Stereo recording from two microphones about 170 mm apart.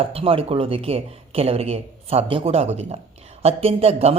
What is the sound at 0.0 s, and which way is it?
Speech, 35° right (ahead or behind).